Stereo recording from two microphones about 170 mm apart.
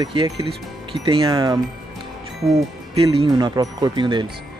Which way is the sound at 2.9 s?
35° right (ahead or behind).